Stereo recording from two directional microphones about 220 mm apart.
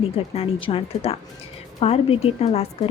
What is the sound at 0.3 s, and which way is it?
Speech, 25° left (ahead or behind).